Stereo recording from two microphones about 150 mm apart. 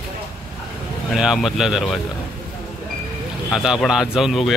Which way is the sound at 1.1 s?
Centre (ahead or behind).